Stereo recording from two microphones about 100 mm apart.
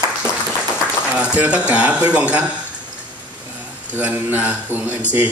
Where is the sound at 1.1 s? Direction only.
10° right (ahead or behind).